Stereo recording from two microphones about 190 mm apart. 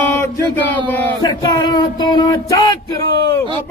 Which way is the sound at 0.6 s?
10° left (ahead or behind).